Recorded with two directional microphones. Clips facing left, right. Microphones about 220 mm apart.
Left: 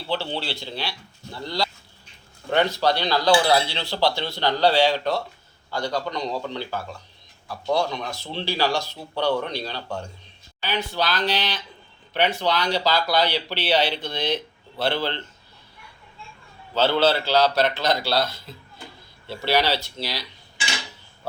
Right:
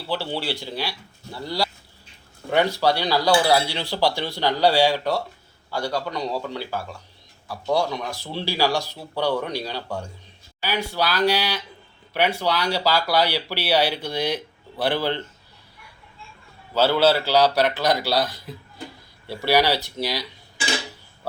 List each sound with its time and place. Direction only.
0.1 s speech: 10° right (ahead or behind)
16.7 s speech: 10° right (ahead or behind)